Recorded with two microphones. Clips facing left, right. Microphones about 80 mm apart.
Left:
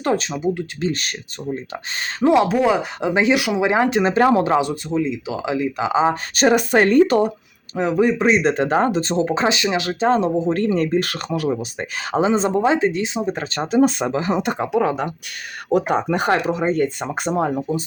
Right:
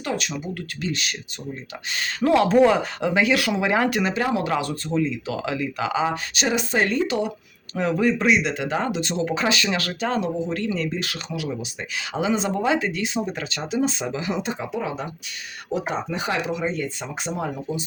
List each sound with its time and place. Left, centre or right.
0.0 s speech: left
0.3 s speech: left
2.2 s speech: centre
2.5 s speech: centre; by 4.1 s left
4.1 s speech: left
4.4 s speech: left
4.9 s speech: centre
6.3 s speech: left
7.8 s speech: centre
8.3 s speech: left
10.1 s speech: left
14.4 s speech: left